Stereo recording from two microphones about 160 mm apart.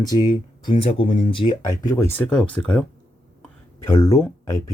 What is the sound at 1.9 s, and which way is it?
Speech, 15° left (ahead or behind).